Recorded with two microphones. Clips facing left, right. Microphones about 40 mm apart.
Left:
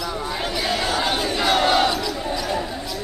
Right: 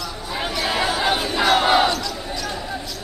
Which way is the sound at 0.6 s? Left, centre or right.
Centre.